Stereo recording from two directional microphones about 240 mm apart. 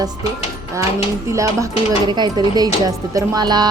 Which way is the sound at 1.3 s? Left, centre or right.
Centre.